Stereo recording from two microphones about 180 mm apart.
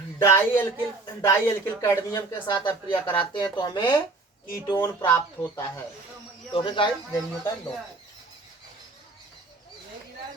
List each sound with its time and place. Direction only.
0.2 s speech: 15° left (ahead or behind)
2.5 s a woman's voice: 25° left (ahead or behind)